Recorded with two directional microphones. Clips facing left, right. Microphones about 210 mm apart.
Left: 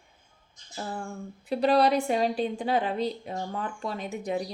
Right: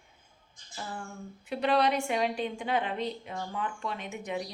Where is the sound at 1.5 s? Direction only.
35° left (ahead or behind).